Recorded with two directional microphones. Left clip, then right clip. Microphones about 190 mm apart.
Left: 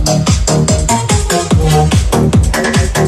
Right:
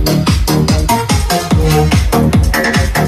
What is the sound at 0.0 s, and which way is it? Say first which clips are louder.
Music: left 1 dB; 55° left (ahead or behind).